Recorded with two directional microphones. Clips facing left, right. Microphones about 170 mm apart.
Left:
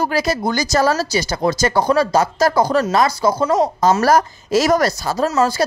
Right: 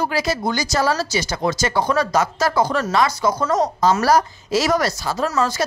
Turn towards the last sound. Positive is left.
turn(degrees=40)  # may be behind; listen again after turning